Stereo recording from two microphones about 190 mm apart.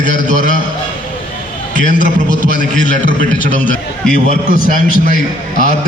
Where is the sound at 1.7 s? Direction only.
45° left (ahead or behind).